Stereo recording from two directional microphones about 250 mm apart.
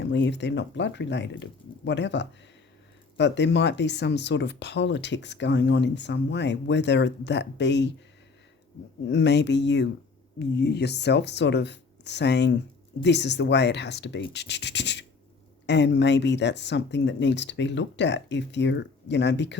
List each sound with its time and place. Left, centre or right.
0.0 s speech: left
9.0 s speech: left